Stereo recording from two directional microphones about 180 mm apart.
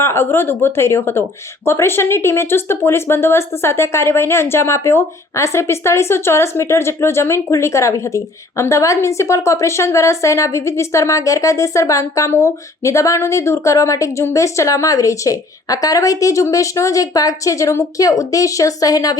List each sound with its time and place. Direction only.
0.0 s speech: 15° left (ahead or behind)